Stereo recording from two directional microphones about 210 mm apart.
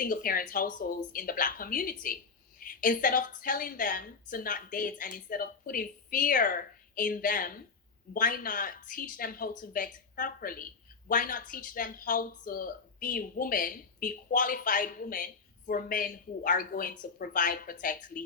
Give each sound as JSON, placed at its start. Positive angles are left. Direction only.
{"t": 0.0, "sound": "speech", "side_deg": 40}